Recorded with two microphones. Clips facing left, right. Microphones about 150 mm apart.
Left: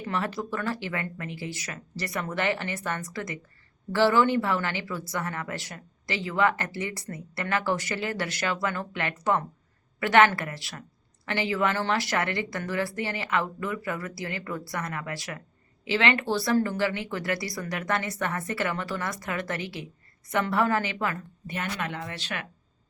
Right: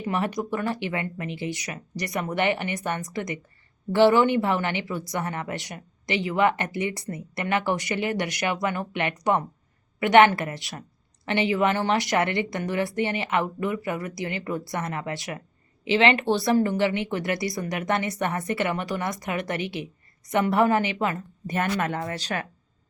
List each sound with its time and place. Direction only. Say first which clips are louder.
0.0 s a woman's voice: right 3 dB; 15° right (ahead or behind)
21.4 s speech: right 7 dB; 45° right (ahead or behind)